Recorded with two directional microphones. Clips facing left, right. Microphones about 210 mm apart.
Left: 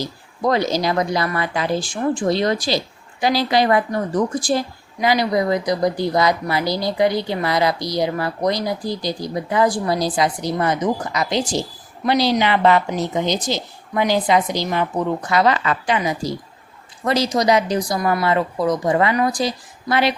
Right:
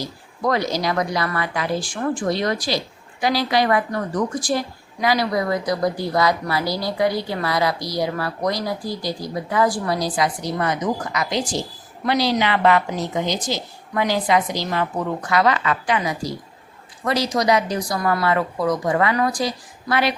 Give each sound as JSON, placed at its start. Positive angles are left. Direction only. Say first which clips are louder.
{"t": 0.4, "sound": "speech", "louder": "left 3 dB", "side_deg": 25}